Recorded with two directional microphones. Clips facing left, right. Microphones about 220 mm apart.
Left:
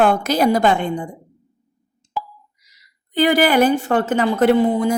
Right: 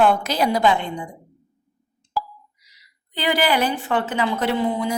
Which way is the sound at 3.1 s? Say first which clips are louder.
Left 6 dB; 50° left (ahead or behind).